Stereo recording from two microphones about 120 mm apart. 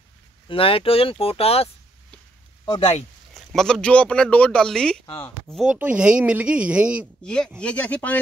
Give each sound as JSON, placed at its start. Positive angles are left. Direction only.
{"t": 0.5, "sound": "speech", "side_deg": 50}
{"t": 3.3, "sound": "speech", "side_deg": 5}
{"t": 5.0, "sound": "speech", "side_deg": 50}
{"t": 5.7, "sound": "speech", "side_deg": -10}
{"t": 7.2, "sound": "speech", "side_deg": 5}